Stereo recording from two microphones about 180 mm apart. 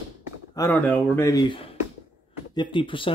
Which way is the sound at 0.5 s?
10° left (ahead or behind).